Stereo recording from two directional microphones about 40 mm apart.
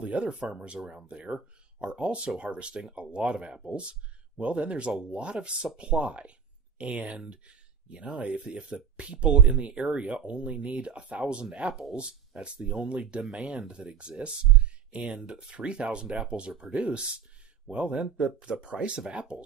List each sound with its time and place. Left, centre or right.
0.0 s speech: right
0.4 s speech: right
11.9 s speech: right